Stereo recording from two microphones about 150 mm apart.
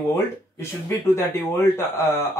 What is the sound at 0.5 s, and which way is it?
Speech, 15° left (ahead or behind).